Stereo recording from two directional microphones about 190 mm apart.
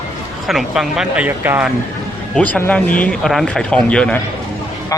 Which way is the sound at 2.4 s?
10° left (ahead or behind).